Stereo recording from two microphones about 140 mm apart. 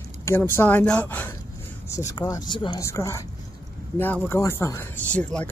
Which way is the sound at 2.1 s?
25° left (ahead or behind).